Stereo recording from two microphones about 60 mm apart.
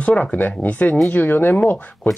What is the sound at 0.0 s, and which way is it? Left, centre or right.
Speech, left.